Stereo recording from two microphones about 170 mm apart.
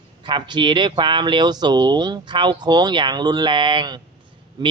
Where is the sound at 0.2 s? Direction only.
30° right (ahead or behind).